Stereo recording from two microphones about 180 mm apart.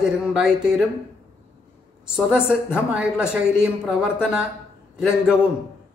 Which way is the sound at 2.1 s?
5° right (ahead or behind).